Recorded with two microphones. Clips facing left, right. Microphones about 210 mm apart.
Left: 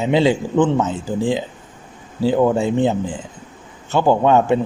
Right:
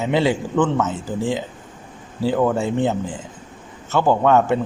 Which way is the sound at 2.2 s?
15° left (ahead or behind).